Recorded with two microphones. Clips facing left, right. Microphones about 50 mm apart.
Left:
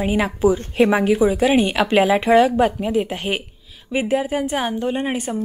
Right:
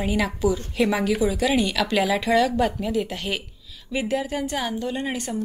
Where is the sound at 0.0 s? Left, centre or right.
Left.